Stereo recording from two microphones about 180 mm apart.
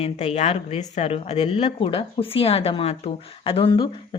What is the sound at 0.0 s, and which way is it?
A woman's voice, 35° left (ahead or behind).